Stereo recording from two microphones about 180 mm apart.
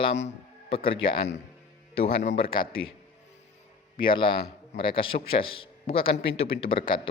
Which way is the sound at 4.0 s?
25° left (ahead or behind).